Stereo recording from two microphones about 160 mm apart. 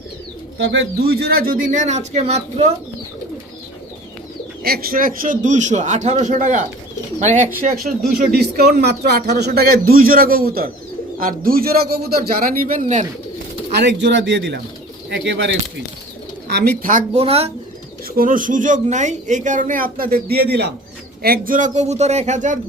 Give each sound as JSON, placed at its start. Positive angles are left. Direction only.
{"t": 0.7, "sound": "speech", "side_deg": -80}
{"t": 4.6, "sound": "speech", "side_deg": -70}
{"t": 7.9, "sound": "a man's voice", "side_deg": -75}
{"t": 13.7, "sound": "a man's voice", "side_deg": -90}
{"t": 16.5, "sound": "speech", "side_deg": -85}
{"t": 16.9, "sound": "speech", "side_deg": -40}
{"t": 18.2, "sound": "speech", "side_deg": -55}
{"t": 21.2, "sound": "speech", "side_deg": -70}